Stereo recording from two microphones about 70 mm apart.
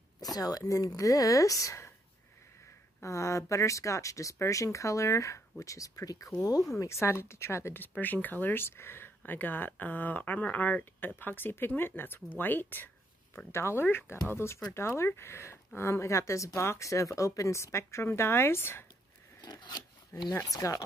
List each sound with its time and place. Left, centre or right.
0.2 s speech: left
3.0 s speech: left
6.8 s speech: left
8.0 s speech: left
13.5 s speech: left
13.8 s speech: left
19.4 s zipper: left
20.3 s speech: left